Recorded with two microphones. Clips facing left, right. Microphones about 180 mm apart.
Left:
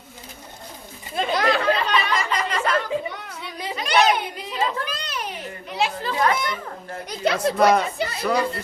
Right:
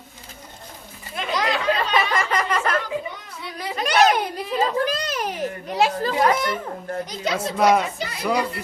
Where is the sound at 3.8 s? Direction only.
45° right (ahead or behind).